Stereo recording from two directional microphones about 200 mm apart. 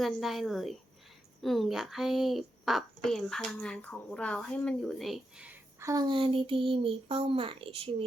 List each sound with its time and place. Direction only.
0.0 s a woman's voice: centre (ahead or behind)
5.9 s speech: 20° right (ahead or behind)